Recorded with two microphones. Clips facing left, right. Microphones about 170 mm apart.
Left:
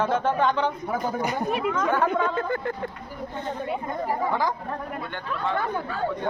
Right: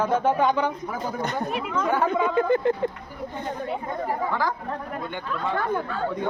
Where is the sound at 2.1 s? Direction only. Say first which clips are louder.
Right 4 dB; 10° right (ahead or behind).